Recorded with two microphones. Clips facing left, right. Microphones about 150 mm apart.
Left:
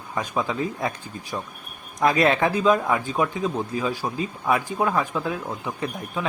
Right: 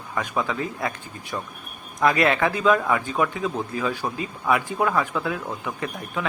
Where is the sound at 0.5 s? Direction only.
25° left (ahead or behind).